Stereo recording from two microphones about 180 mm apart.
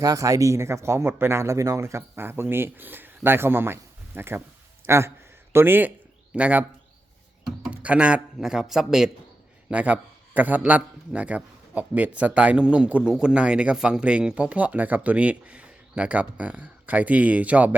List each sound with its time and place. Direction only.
0.0 s a man's voice: 20° right (ahead or behind)